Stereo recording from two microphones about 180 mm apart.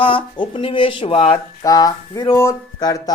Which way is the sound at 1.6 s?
20° left (ahead or behind).